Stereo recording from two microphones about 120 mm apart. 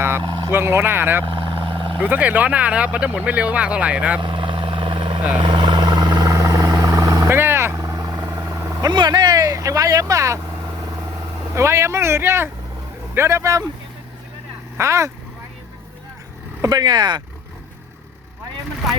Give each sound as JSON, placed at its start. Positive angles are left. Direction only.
{"t": 0.4, "sound": "speech", "side_deg": -20}
{"t": 1.2, "sound": "vehicle", "side_deg": -50}
{"t": 2.0, "sound": "speech", "side_deg": -15}
{"t": 4.2, "sound": "vehicle", "side_deg": -45}
{"t": 7.3, "sound": "vehicle", "side_deg": -20}
{"t": 8.9, "sound": "speech", "side_deg": -40}
{"t": 11.5, "sound": "speech", "side_deg": -25}
{"t": 14.8, "sound": "speech", "side_deg": -25}
{"t": 16.6, "sound": "speech", "side_deg": -30}